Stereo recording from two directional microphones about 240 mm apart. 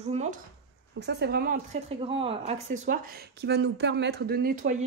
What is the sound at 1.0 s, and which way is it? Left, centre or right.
Speech, right.